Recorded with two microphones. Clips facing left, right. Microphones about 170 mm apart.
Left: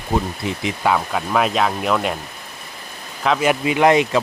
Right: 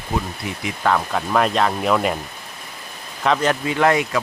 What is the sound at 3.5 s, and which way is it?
Speech, 15° left (ahead or behind).